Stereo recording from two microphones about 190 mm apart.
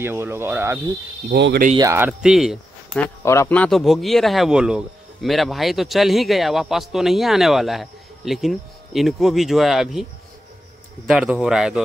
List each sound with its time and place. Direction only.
0.0 s speech: 10° right (ahead or behind)
1.3 s speech: 60° right (ahead or behind)
1.8 s speech: 15° right (ahead or behind)
3.3 s a man's voice: 10° left (ahead or behind)
11.1 s a man's voice: 5° right (ahead or behind)